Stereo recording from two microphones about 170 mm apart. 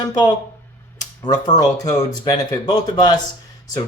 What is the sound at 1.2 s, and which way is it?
Speech, 25° left (ahead or behind).